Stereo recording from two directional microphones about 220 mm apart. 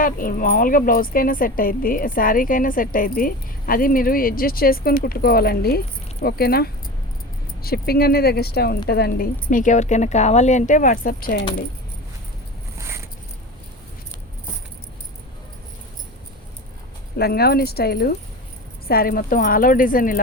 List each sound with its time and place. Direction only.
0.0 s a woman's voice: 40° left (ahead or behind)
17.2 s a woman's voice: 45° left (ahead or behind)